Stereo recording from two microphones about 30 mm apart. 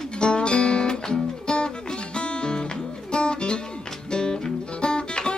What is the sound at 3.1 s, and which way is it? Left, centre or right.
Music, left.